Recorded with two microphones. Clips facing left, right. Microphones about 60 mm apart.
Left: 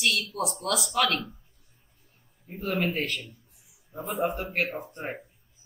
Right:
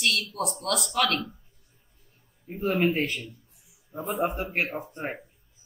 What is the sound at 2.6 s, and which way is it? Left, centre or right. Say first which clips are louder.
Speech: right 4 dB; right.